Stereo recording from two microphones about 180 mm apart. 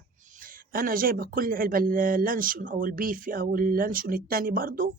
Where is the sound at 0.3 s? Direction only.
50° right (ahead or behind).